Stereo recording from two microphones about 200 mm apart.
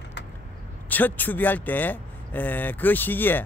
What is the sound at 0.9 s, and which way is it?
Speech, 10° left (ahead or behind).